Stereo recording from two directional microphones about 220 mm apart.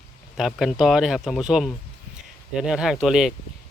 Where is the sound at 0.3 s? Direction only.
Centre (ahead or behind).